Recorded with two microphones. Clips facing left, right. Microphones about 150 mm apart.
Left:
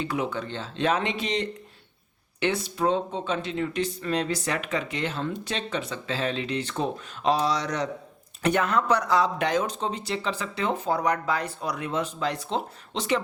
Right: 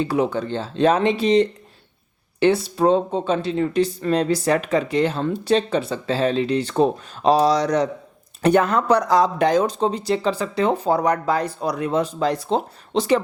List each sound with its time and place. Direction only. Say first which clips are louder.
0.0 s speech: right 8 dB; 35° right (ahead or behind)